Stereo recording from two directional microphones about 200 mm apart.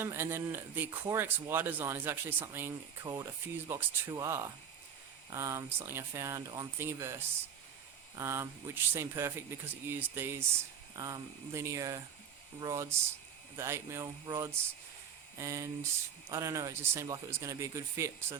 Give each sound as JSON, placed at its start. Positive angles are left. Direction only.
{"t": 0.0, "sound": "speech", "side_deg": -10}
{"t": 8.1, "sound": "speech", "side_deg": -10}